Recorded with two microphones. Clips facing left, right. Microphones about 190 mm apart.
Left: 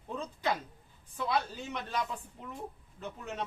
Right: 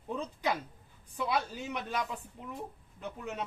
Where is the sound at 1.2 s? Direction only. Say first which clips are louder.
Even; 10° right (ahead or behind).